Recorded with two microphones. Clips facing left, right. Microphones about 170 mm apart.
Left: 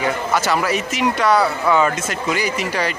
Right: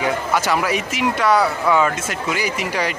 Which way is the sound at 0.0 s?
10° right (ahead or behind).